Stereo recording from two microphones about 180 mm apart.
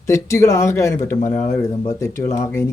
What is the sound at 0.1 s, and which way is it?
Speech, 15° left (ahead or behind).